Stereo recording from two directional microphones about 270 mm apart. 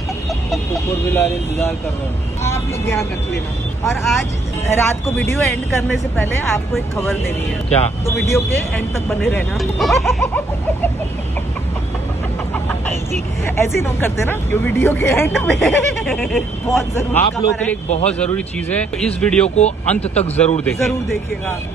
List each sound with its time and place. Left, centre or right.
0.5 s speech: centre
8.0 s speech: centre
13.6 s speech: centre
17.8 s speech: left
18.2 s speech: centre
19.4 s speech: left
20.6 s speech: centre